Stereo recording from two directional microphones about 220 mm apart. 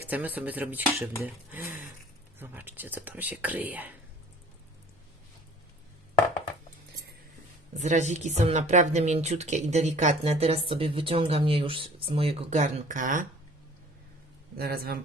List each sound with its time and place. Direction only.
0.0 s speech: 10° right (ahead or behind)
7.7 s speech: 30° right (ahead or behind)
14.5 s speech: 45° right (ahead or behind)